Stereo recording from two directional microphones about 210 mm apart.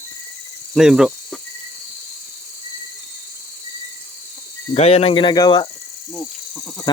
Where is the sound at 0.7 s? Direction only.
Centre (ahead or behind).